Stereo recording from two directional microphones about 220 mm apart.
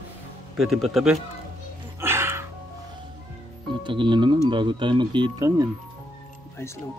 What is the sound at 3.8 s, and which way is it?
Speech, 20° right (ahead or behind).